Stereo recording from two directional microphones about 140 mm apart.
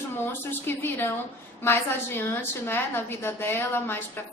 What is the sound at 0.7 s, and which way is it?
A woman's voice, 15° left (ahead or behind).